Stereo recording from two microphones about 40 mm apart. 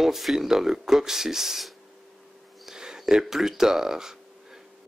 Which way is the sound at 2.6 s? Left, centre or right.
Centre.